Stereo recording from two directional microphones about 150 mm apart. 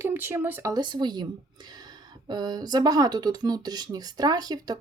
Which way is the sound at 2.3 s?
25° right (ahead or behind).